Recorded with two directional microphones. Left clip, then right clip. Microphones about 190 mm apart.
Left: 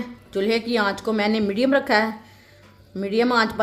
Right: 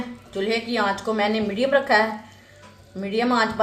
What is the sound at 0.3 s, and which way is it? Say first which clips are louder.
A woman's voice: left 3 dB; 60° left (ahead or behind).